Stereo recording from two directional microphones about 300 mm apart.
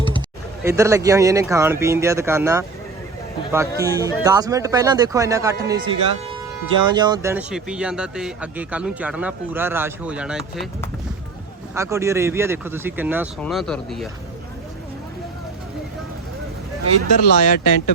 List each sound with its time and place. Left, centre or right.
0.6 s speech: centre
11.7 s speech: centre
17.1 s speech: left